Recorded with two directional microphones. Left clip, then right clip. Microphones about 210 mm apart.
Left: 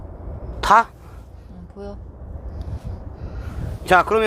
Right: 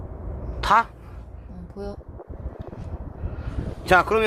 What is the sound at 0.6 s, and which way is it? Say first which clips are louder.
Speech: left 4 dB; 55° left (ahead or behind).